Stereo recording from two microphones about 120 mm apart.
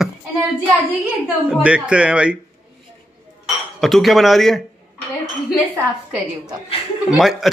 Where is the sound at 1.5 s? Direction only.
10° right (ahead or behind).